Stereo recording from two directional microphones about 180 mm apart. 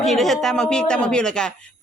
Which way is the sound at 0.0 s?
Centre (ahead or behind).